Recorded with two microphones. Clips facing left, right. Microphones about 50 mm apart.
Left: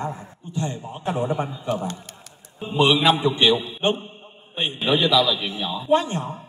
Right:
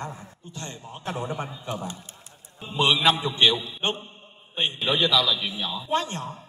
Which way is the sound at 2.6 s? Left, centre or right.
Centre.